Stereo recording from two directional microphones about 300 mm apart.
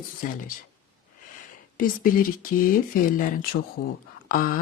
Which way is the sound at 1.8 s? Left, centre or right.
Left.